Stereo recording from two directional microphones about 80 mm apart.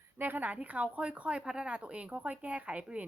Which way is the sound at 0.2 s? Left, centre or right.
Right.